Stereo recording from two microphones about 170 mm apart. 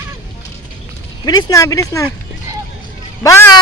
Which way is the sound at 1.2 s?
20° left (ahead or behind).